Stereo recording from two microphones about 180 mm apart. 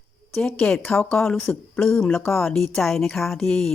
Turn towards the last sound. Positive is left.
turn(degrees=5)  # may be behind; listen again after turning